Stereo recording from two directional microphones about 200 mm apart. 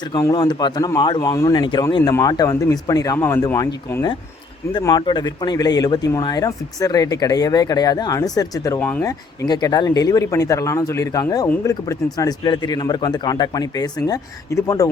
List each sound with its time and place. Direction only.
0.1 s speech: 20° left (ahead or behind)